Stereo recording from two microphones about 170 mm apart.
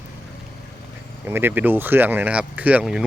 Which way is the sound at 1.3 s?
10° right (ahead or behind).